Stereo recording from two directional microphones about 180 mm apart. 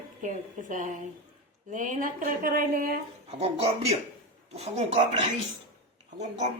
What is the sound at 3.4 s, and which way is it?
Speech, 35° right (ahead or behind).